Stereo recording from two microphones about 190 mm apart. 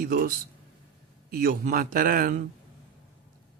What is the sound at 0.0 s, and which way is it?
Speech, 50° right (ahead or behind).